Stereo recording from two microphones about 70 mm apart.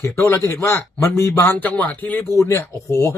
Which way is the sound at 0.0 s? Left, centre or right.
Left.